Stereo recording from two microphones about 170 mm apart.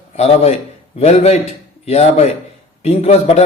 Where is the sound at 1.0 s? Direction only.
40° left (ahead or behind).